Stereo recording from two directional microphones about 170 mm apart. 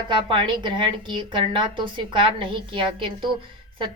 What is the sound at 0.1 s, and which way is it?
A woman's voice, 25° right (ahead or behind).